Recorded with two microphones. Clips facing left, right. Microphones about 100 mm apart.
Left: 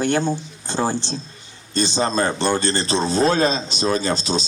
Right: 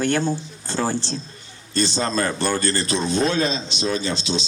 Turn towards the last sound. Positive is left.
turn(degrees=40)  # may be behind; listen again after turning